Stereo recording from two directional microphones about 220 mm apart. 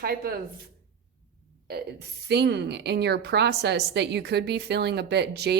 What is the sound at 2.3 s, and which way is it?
A woman's voice, 50° right (ahead or behind).